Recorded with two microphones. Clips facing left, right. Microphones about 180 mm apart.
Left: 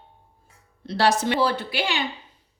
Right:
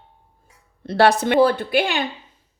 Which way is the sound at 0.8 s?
60° right (ahead or behind).